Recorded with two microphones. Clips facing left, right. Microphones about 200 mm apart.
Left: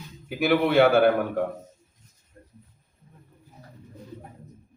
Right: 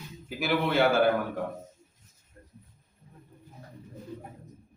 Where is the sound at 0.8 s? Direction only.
60° left (ahead or behind).